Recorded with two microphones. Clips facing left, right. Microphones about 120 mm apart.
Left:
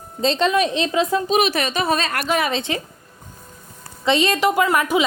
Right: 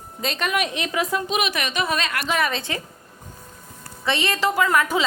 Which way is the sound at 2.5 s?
25° left (ahead or behind).